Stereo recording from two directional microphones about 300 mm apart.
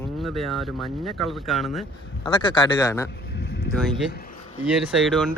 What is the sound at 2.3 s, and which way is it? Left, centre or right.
Speech, centre.